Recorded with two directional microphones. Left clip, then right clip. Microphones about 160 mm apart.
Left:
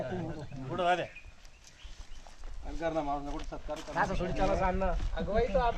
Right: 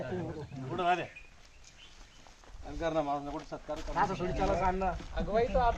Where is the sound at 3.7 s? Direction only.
60° left (ahead or behind).